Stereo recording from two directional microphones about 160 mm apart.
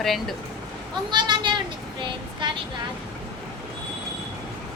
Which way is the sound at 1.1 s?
25° right (ahead or behind).